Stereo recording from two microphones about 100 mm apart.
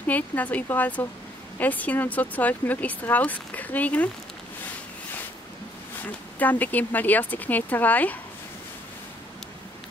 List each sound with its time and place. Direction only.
0.0 s speech: 15° left (ahead or behind)
6.0 s speech: 20° left (ahead or behind)